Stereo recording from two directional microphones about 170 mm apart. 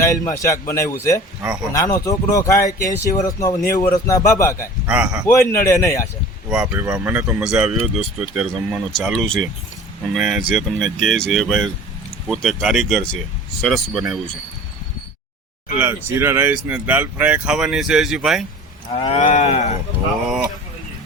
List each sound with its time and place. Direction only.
0.0 s a man's voice: 20° left (ahead or behind)
4.9 s speech: 5° right (ahead or behind)
5.2 s a man's voice: 15° left (ahead or behind)
6.5 s speech: 5° right (ahead or behind)
16.0 s speech: 15° right (ahead or behind)
18.9 s cattle: 40° left (ahead or behind)